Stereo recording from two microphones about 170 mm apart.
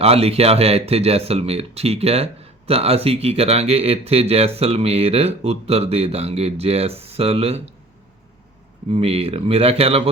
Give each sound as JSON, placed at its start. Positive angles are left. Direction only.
{"t": 0.0, "sound": "speech", "side_deg": -35}
{"t": 8.9, "sound": "speech", "side_deg": -35}